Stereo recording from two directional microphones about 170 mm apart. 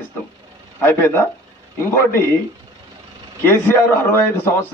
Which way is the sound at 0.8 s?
15° left (ahead or behind).